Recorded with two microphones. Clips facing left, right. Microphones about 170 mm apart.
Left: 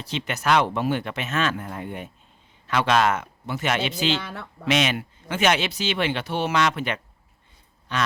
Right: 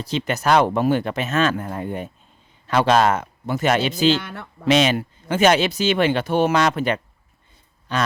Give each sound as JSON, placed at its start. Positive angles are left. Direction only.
{"t": 0.0, "sound": "speech", "side_deg": -40}
{"t": 4.1, "sound": "speech", "side_deg": 0}
{"t": 4.6, "sound": "speech", "side_deg": -35}